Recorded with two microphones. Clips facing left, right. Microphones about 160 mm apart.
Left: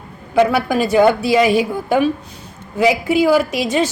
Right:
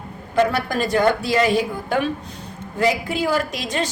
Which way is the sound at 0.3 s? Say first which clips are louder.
Left 5 dB; 10° left (ahead or behind).